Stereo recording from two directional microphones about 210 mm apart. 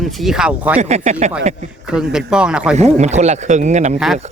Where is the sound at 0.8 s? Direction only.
30° right (ahead or behind).